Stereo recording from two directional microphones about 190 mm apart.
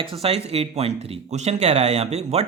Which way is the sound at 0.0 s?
30° right (ahead or behind).